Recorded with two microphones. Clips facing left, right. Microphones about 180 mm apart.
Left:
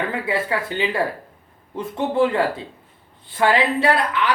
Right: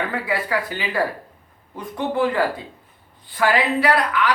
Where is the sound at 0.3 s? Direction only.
25° left (ahead or behind).